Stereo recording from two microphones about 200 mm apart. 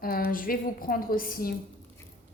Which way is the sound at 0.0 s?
45° left (ahead or behind).